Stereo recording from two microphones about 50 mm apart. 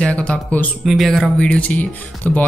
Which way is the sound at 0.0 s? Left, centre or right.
Left.